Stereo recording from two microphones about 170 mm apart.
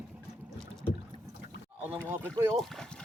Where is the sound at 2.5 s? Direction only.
5° left (ahead or behind).